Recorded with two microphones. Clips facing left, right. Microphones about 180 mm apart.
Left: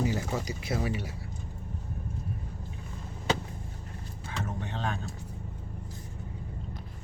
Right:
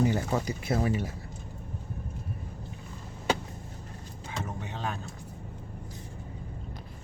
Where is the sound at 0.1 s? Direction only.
55° right (ahead or behind).